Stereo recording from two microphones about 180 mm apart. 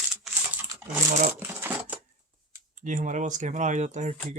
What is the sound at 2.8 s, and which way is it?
Speech, 45° right (ahead or behind).